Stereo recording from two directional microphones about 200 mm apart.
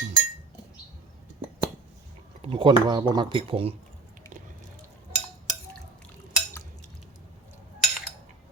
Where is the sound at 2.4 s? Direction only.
25° right (ahead or behind).